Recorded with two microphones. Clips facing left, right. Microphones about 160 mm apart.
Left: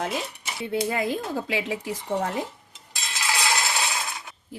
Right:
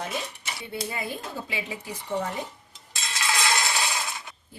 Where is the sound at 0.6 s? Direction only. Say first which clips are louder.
Left 8 dB; 90° left.